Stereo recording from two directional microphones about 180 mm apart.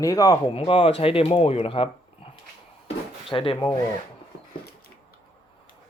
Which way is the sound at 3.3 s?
30° left (ahead or behind).